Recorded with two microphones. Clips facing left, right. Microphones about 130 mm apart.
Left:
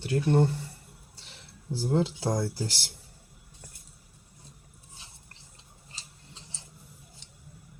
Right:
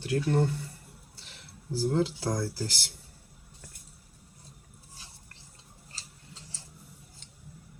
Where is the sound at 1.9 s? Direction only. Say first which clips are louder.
Left 2 dB; 25° left (ahead or behind).